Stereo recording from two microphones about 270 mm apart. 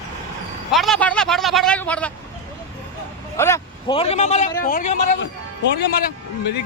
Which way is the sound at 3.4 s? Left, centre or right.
Centre.